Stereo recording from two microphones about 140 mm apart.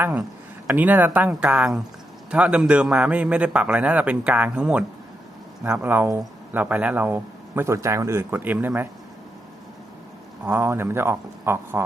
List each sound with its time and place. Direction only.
0.7 s speech: 10° right (ahead or behind)
10.4 s speech: 15° right (ahead or behind)